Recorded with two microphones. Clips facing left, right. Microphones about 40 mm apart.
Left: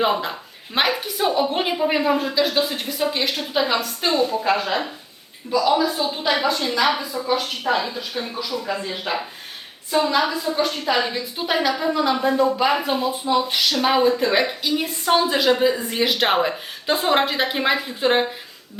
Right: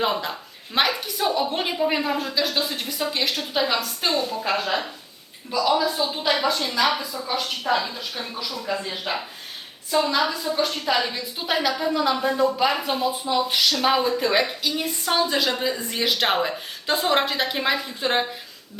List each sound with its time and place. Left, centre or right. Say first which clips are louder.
0.0 s a woman's voice: left 3 dB; centre
5.6 s speech: left 1 dB; centre
6.8 s a woman's voice: left 3 dB; centre